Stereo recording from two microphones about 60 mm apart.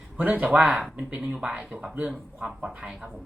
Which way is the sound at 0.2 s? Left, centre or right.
Right.